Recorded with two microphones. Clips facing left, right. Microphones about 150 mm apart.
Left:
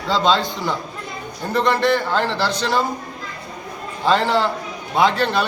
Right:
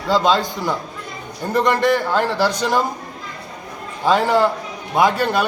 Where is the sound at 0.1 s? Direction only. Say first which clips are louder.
Right 1 dB; 10° right (ahead or behind).